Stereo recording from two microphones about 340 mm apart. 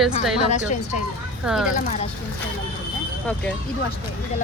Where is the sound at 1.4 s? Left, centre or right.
Centre.